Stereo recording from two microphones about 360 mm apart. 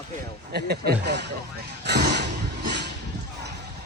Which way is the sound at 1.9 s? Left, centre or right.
Right.